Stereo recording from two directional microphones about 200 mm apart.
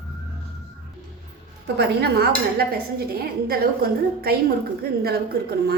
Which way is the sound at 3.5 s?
50° right (ahead or behind).